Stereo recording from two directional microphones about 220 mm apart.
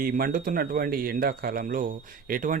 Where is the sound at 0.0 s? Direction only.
40° right (ahead or behind).